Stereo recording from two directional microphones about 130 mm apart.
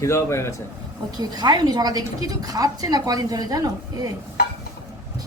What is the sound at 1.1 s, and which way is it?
A woman's voice, 30° right (ahead or behind).